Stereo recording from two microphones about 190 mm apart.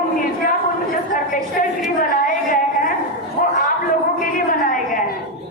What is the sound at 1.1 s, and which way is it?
Speech, 45° left (ahead or behind).